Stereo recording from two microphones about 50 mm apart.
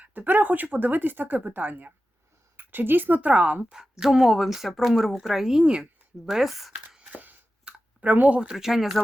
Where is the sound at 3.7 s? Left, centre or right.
Centre.